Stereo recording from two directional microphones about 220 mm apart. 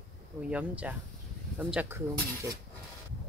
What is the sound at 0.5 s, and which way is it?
Speech, 5° right (ahead or behind).